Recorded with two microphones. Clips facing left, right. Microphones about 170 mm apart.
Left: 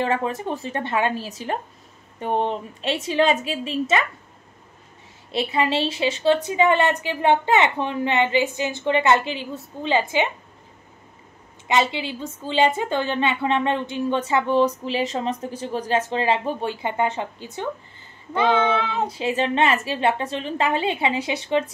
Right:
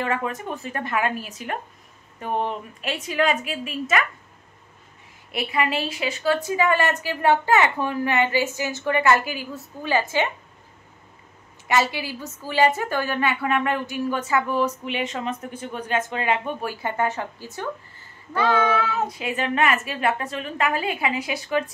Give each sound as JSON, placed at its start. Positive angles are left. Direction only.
{"t": 0.0, "sound": "a woman's voice", "side_deg": 30}
{"t": 5.3, "sound": "a woman's voice", "side_deg": 25}
{"t": 11.6, "sound": "a woman's voice", "side_deg": 20}